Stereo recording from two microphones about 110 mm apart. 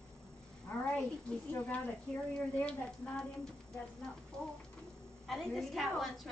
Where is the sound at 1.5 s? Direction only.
15° left (ahead or behind).